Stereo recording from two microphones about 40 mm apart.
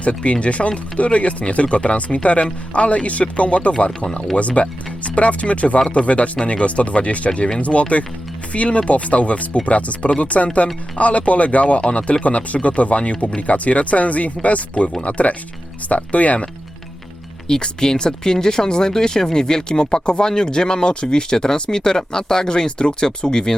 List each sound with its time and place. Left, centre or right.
0.0 s speech: left
17.5 s speech: centre